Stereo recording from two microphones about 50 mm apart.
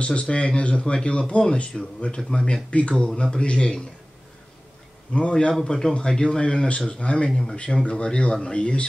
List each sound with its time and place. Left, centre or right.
0.0 s speech: left
5.1 s speech: left
7.2 s speech: centre
7.5 s speech: left